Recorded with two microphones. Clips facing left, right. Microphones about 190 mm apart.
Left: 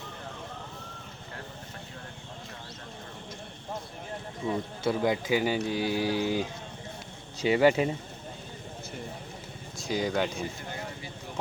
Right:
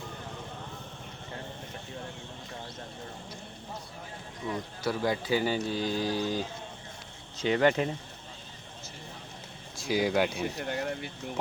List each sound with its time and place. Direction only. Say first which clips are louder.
4.4 s speech: left 3 dB; 25° left (ahead or behind); by 7.9 s 5° left (ahead or behind)
9.9 s speech: right 2 dB; 5° right (ahead or behind)
10.2 s speech: right 3 dB; 60° right (ahead or behind)